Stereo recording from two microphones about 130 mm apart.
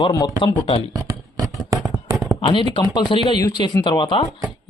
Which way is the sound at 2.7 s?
35° left (ahead or behind).